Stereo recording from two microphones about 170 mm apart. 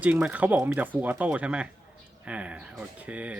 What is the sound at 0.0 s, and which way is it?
Speech, 10° right (ahead or behind).